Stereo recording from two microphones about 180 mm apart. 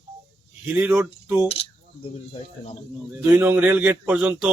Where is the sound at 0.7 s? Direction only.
10° right (ahead or behind).